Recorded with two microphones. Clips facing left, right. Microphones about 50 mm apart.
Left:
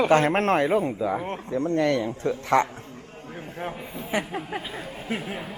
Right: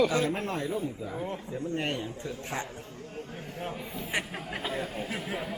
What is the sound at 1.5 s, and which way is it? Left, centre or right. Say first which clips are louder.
A man's voice: left 11 dB; left.